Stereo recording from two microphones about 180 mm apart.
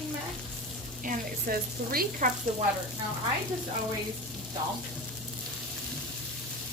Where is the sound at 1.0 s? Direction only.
55° right (ahead or behind).